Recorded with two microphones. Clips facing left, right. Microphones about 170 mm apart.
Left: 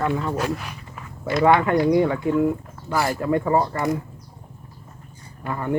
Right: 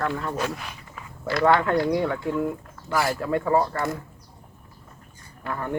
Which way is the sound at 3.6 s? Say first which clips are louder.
Left 3 dB; 15° left (ahead or behind).